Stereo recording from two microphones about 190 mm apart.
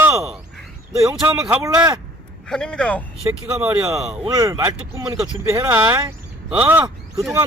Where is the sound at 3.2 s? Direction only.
15° right (ahead or behind).